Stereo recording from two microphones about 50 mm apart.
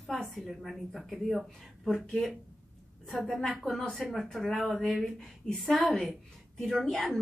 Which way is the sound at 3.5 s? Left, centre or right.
Centre.